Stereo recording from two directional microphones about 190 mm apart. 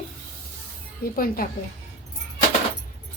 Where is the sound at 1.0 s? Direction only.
50° left (ahead or behind).